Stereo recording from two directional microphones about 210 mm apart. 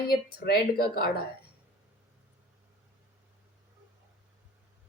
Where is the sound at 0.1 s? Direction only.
45° left (ahead or behind).